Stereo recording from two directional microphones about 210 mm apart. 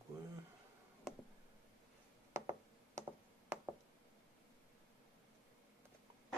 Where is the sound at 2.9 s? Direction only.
15° right (ahead or behind).